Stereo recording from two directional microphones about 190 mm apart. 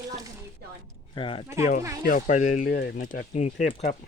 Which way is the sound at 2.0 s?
45° left (ahead or behind).